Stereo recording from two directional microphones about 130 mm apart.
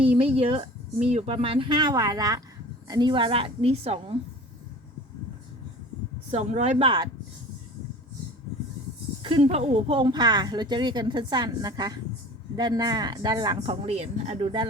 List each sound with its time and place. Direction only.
0.0 s speech: 45° right (ahead or behind)
6.3 s speech: 60° right (ahead or behind)
6.8 s speech: 40° right (ahead or behind)
9.2 s speech: 45° right (ahead or behind)
13.8 s speech: 50° right (ahead or behind)